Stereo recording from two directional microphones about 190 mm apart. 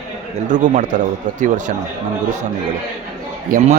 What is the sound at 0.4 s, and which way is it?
Speech, 40° right (ahead or behind).